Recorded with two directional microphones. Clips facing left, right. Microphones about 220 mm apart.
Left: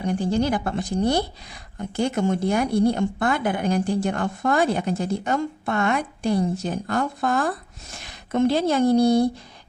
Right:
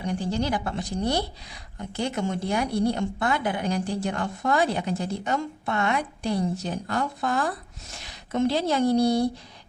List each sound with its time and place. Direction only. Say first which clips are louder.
0.0 s speech: left 5 dB; 50° left (ahead or behind)